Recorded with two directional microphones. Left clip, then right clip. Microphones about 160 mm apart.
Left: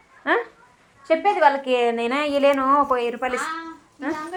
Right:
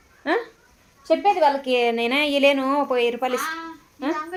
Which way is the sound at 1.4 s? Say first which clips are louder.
Left 1 dB; 15° right (ahead or behind).